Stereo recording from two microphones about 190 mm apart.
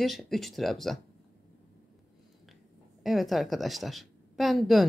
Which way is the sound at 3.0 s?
Centre (ahead or behind).